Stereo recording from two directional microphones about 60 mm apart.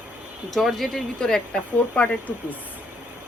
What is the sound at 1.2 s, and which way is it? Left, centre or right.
Speech, centre.